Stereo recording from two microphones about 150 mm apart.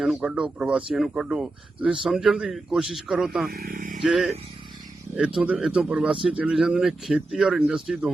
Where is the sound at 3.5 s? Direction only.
75° right (ahead or behind).